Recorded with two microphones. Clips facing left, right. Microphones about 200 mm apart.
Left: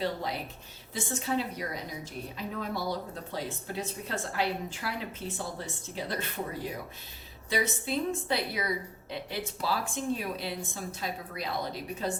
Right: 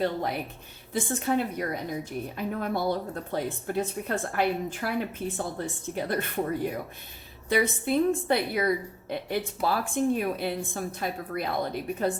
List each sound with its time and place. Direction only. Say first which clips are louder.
0.0 s a woman's voice: right 4 dB; 55° right (ahead or behind)
7.5 s a woman's voice: right 6 dB; 55° right (ahead or behind)